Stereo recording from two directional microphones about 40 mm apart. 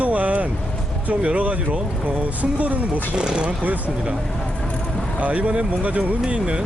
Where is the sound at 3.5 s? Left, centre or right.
Right.